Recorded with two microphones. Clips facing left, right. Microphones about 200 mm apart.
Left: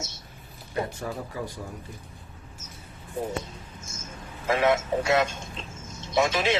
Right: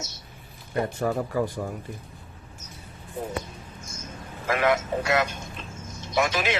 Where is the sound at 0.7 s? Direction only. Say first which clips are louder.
Right 5 dB; 60° right (ahead or behind).